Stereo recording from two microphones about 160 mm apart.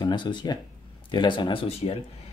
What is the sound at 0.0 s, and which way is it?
Speech, 30° left (ahead or behind).